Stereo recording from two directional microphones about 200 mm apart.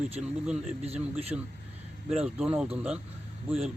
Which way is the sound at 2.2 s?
5° right (ahead or behind).